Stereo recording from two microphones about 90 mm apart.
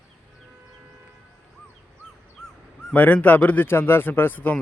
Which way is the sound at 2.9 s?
15° left (ahead or behind).